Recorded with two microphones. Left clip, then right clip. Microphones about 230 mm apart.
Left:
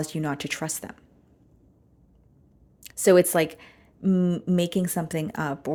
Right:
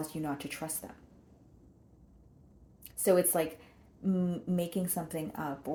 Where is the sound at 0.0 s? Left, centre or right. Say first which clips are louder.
Left 7 dB; left.